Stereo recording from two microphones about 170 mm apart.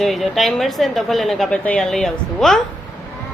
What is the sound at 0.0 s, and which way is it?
A woman's voice, centre (ahead or behind).